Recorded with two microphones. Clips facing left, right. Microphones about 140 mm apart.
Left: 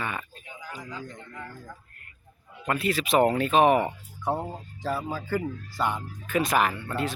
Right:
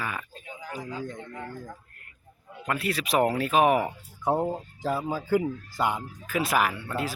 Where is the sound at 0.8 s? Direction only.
25° right (ahead or behind).